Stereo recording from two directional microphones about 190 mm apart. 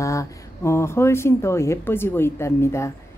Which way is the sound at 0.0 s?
15° left (ahead or behind).